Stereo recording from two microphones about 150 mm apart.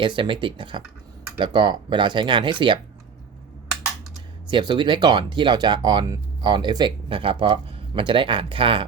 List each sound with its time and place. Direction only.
0.0 s speech: 35° right (ahead or behind)
4.4 s speech: 30° right (ahead or behind)